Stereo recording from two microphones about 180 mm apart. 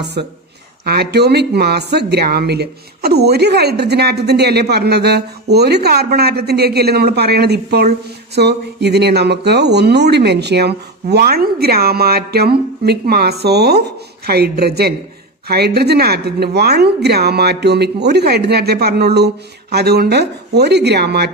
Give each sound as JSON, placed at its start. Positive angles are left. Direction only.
{"t": 0.0, "sound": "speech", "side_deg": -65}